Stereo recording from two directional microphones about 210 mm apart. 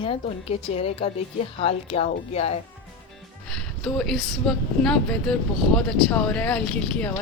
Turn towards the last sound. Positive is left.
turn(degrees=5)  # may be behind; listen again after turning